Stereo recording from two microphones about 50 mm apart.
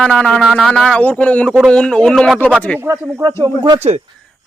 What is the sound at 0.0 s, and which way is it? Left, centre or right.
A man's voice, left.